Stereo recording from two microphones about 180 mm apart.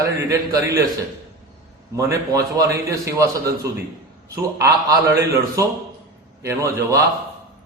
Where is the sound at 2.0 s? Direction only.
15° right (ahead or behind).